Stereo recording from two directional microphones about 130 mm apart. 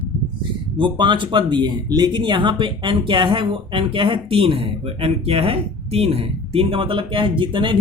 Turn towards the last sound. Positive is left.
turn(degrees=-40)  # may be behind; listen again after turning